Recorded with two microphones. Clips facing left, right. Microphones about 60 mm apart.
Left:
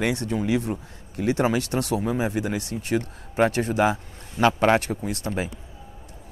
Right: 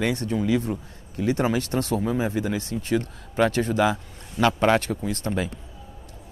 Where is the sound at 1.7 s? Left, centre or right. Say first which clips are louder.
Even; left.